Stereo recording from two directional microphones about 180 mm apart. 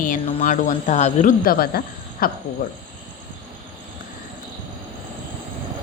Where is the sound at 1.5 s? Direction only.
55° left (ahead or behind).